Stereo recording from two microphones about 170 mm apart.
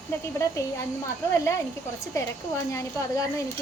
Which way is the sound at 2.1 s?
15° left (ahead or behind).